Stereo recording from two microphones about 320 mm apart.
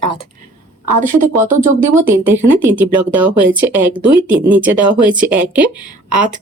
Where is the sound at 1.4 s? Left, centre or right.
Right.